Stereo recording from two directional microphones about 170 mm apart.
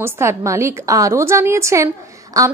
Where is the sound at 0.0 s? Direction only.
15° right (ahead or behind).